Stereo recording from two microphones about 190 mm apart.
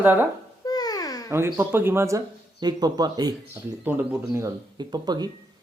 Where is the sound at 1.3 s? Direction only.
15° right (ahead or behind).